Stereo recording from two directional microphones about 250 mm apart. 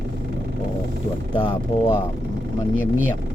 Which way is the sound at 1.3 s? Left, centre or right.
Centre.